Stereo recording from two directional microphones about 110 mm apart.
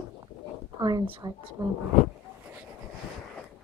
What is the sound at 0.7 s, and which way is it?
Speech, 40° right (ahead or behind).